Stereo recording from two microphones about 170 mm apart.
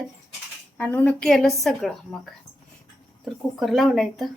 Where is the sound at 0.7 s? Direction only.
10° left (ahead or behind).